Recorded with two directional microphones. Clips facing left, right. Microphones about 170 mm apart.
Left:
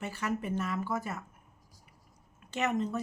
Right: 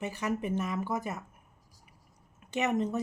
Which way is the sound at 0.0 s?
15° right (ahead or behind).